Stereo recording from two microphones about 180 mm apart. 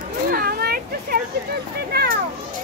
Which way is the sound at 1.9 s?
60° right (ahead or behind).